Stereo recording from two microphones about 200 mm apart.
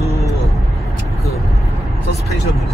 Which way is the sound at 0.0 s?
15° left (ahead or behind).